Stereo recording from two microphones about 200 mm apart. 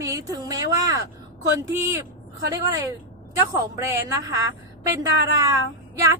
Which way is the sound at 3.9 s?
15° right (ahead or behind).